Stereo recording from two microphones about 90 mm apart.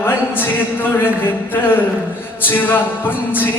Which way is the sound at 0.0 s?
25° left (ahead or behind).